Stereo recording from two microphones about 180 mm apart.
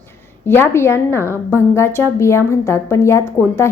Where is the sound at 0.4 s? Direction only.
15° left (ahead or behind).